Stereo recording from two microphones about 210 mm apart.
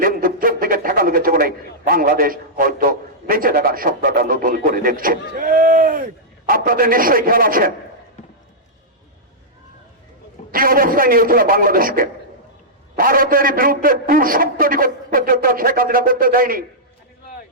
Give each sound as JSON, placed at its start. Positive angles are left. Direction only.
{"t": 0.0, "sound": "a man's voice", "side_deg": -45}
{"t": 10.5, "sound": "a man's voice", "side_deg": -40}